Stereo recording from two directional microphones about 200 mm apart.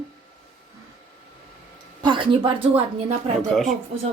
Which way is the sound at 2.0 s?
25° right (ahead or behind).